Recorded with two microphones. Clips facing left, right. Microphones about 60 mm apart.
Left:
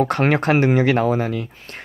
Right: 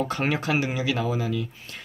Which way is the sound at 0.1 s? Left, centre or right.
Left.